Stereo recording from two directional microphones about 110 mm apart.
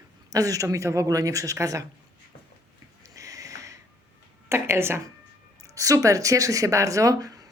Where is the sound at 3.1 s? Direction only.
30° right (ahead or behind).